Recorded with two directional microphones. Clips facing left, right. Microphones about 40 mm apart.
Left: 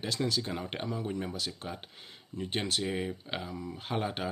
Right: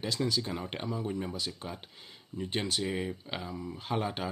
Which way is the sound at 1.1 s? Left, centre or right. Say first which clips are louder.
Even; centre.